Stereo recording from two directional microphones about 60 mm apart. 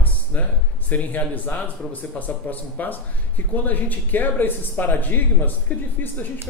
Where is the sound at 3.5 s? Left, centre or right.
Left.